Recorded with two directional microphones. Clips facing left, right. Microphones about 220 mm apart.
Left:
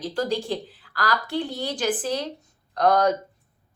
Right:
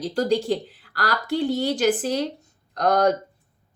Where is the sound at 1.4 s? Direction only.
40° right (ahead or behind).